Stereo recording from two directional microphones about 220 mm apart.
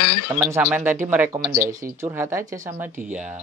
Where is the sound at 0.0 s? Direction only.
90° left.